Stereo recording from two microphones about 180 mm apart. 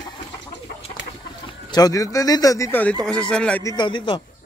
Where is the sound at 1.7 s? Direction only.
20° left (ahead or behind).